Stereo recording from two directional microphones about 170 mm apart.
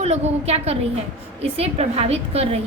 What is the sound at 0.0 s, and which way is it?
A woman's voice, 40° right (ahead or behind).